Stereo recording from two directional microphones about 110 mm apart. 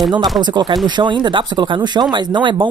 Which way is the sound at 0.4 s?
40° right (ahead or behind).